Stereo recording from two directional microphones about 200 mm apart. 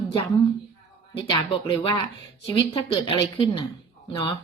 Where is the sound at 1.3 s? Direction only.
25° left (ahead or behind).